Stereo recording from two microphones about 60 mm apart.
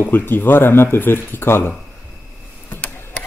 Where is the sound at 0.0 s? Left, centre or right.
Left.